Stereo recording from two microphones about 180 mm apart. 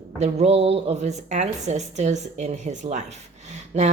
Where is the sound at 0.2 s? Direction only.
35° right (ahead or behind).